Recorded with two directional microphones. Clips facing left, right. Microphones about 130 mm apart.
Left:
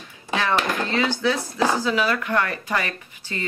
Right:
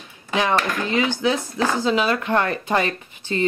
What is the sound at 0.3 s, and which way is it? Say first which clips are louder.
Speech: right 2 dB; 15° right (ahead or behind).